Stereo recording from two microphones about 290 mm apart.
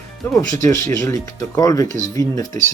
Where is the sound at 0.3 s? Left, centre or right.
Centre.